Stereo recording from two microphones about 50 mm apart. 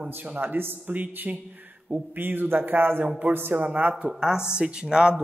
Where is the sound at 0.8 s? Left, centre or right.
Right.